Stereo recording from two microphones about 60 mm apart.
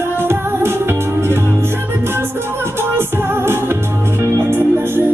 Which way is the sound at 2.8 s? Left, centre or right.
Right.